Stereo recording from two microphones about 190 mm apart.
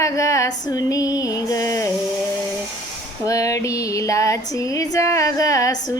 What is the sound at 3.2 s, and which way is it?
Female singing, 15° left (ahead or behind).